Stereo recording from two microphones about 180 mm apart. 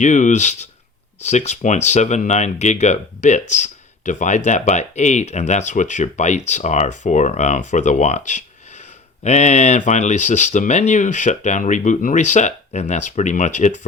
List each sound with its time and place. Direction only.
0.0 s speech: 45° left (ahead or behind)